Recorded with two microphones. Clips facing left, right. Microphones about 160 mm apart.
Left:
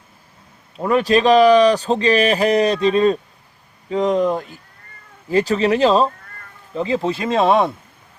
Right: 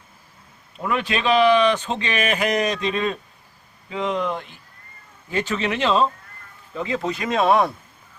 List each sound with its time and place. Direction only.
0.8 s speech: 40° left (ahead or behind)